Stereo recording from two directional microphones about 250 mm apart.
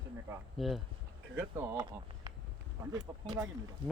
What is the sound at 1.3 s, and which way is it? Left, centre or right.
Speech, centre.